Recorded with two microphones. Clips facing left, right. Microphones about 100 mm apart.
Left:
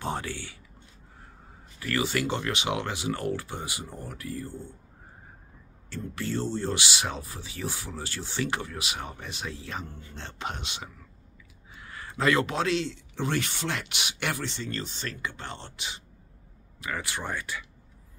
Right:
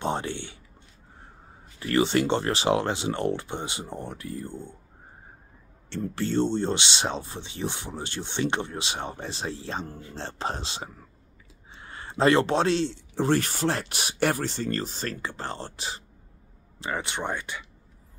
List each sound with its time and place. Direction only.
0.0 s speech: 25° right (ahead or behind)
1.8 s speech: 30° right (ahead or behind)
5.9 s speech: 30° right (ahead or behind)
16.8 s speech: 25° right (ahead or behind)